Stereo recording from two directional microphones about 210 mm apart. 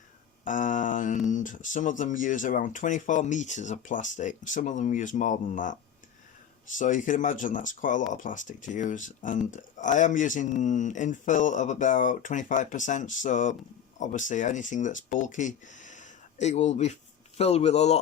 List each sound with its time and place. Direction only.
0.4 s speech: 40° left (ahead or behind)
6.7 s speech: 40° left (ahead or behind)